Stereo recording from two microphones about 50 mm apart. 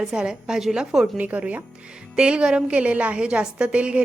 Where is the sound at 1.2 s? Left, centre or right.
Right.